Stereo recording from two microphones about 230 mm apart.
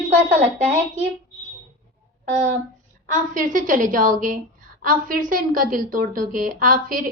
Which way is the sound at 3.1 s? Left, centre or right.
Right.